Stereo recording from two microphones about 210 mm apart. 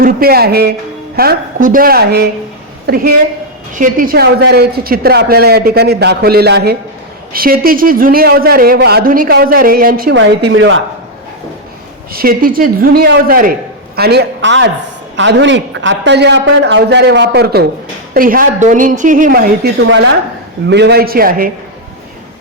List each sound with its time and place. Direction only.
0.0 s a woman's voice: 45° right (ahead or behind)
10.2 s a man's voice: 60° right (ahead or behind)
12.1 s a man's voice: 45° right (ahead or behind)
20.7 s speech: 55° right (ahead or behind)